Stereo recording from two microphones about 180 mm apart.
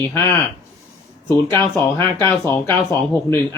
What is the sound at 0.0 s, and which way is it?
Speech, 15° left (ahead or behind).